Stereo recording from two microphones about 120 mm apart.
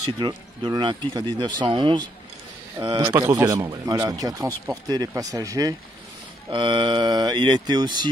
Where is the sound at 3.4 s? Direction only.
30° right (ahead or behind).